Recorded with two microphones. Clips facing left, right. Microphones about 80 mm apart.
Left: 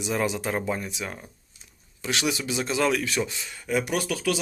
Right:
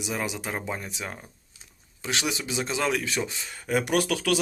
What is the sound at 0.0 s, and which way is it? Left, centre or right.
Speech, centre.